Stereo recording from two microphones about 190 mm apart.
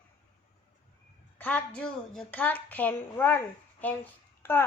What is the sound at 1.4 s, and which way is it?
A woman's voice, 10° left (ahead or behind).